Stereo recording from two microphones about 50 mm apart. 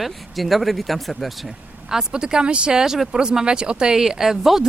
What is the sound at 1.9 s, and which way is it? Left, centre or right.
Speech, centre.